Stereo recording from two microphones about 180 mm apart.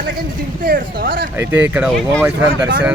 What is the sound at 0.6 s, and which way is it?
Speech, 50° right (ahead or behind).